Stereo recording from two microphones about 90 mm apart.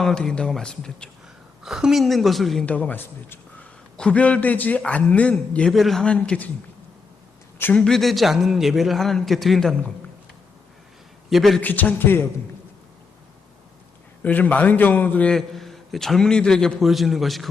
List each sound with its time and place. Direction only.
0.0 s a man's voice: 5° left (ahead or behind)
1.6 s a man's voice: 5° right (ahead or behind)
2.6 s a man's voice: 15° left (ahead or behind)
3.9 s a man's voice: 10° left (ahead or behind)
7.6 s a man's voice: 15° left (ahead or behind)
11.3 s a man's voice: centre (ahead or behind)
11.6 s a man's voice: 20° left (ahead or behind)
14.2 s a man's voice: 15° left (ahead or behind)
15.3 s a man's voice: 5° left (ahead or behind)